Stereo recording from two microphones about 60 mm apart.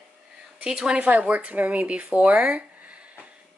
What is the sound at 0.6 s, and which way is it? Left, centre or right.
A woman's voice, centre.